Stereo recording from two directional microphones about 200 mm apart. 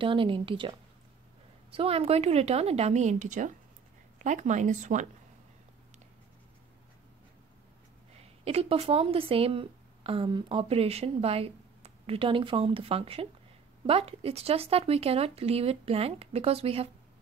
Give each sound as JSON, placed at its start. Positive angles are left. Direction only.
{"t": 0.0, "sound": "a woman's voice", "side_deg": -25}
{"t": 8.1, "sound": "speech", "side_deg": -30}